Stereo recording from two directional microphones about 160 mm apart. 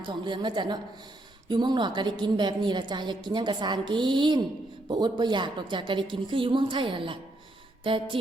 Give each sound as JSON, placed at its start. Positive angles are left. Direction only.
{"t": 0.0, "sound": "a woman's voice", "side_deg": -30}